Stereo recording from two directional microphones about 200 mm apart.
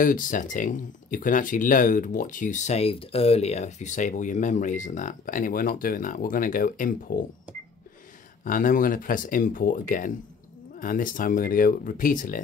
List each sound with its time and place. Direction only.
0.0 s speech: 40° left (ahead or behind)
8.5 s speech: 40° left (ahead or behind)